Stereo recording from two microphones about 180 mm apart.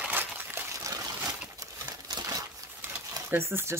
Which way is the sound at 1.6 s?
20° right (ahead or behind).